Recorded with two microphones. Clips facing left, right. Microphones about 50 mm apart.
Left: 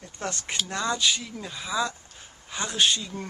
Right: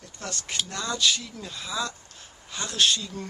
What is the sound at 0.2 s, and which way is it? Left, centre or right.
Speech, left.